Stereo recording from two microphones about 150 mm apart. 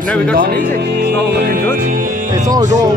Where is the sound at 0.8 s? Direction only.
90° right.